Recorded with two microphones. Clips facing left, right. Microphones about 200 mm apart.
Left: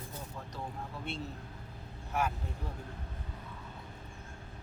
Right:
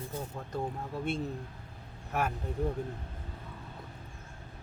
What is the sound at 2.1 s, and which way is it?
Speech, 55° right (ahead or behind).